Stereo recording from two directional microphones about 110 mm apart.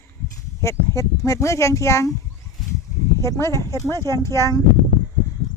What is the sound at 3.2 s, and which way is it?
Speech, 25° left (ahead or behind).